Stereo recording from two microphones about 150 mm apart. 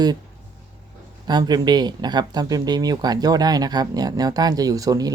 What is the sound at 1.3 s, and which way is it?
Speech, 25° right (ahead or behind).